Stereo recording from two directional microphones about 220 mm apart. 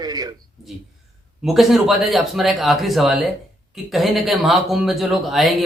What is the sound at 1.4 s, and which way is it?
Speech, centre (ahead or behind).